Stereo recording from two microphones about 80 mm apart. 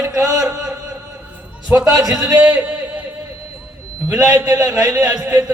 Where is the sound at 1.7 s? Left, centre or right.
Right.